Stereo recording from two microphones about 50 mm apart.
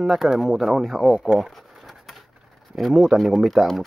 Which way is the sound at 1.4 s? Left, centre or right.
Centre.